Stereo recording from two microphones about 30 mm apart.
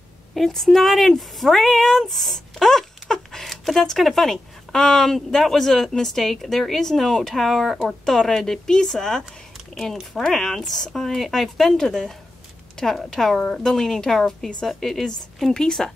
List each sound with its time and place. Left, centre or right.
0.5 s a woman's voice: centre
4.7 s a woman's voice: centre
11.1 s speech: centre
11.8 s speech: left
12.8 s speech: centre
13.4 s a woman's voice: left